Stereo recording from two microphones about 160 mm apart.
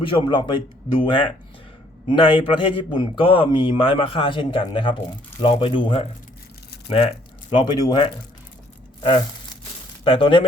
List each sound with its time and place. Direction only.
0.0 s a man's voice: 30° left (ahead or behind)
10.0 s a man's voice: 35° left (ahead or behind)